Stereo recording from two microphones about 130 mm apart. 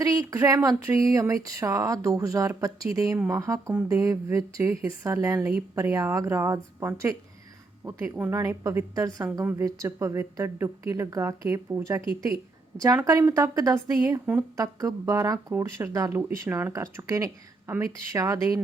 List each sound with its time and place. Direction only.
0.0 s a woman's voice: 25° right (ahead or behind); by 8.3 s 10° right (ahead or behind)
8.3 s a woman's voice: 25° right (ahead or behind)
9.4 s a woman's voice: 15° right (ahead or behind)